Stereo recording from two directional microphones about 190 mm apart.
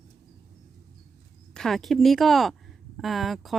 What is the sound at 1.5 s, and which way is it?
Speech, centre (ahead or behind).